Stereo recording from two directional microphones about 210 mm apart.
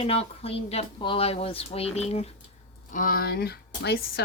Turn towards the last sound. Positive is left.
turn(degrees=50)  # may be behind; listen again after turning